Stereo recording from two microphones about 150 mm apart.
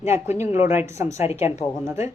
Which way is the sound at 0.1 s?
15° right (ahead or behind).